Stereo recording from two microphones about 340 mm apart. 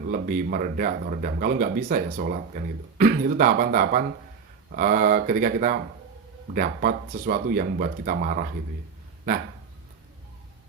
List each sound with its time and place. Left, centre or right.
0.1 s speech: right